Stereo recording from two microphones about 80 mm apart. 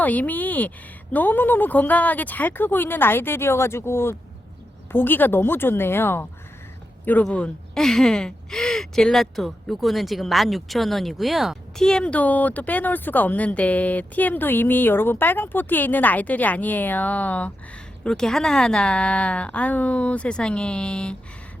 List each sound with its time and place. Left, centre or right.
0.0 s speech: centre
11.9 s speech: centre
18.0 s a woman's voice: centre